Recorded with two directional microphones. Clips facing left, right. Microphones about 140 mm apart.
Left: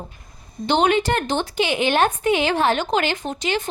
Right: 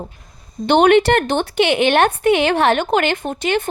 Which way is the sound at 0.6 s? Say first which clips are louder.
Right 6 dB; 60° right (ahead or behind).